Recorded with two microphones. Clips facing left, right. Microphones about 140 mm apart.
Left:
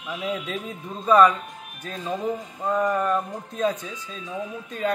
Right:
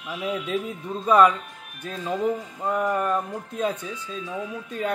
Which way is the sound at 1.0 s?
15° right (ahead or behind).